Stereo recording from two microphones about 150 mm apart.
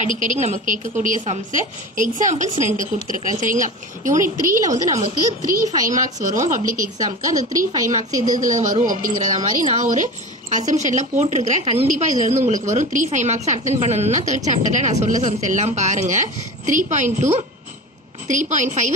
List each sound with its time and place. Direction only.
0.0 s a woman's voice: 60° right (ahead or behind)
4.6 s speech: 20° right (ahead or behind)
5.7 s a woman's voice: 55° right (ahead or behind)
7.2 s speech: 25° right (ahead or behind)
8.4 s a woman's voice: 60° right (ahead or behind)